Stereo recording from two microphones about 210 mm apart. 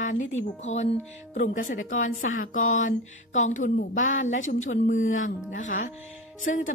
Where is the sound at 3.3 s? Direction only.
35° left (ahead or behind).